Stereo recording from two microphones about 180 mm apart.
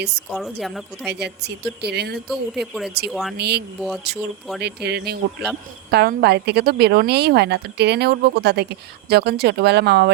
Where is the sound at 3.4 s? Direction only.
65° right (ahead or behind).